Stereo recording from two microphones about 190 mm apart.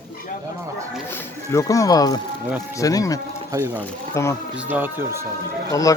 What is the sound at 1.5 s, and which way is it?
A man's voice, 15° left (ahead or behind).